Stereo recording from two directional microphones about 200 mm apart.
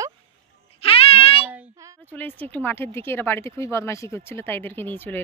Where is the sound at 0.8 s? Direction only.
30° left (ahead or behind).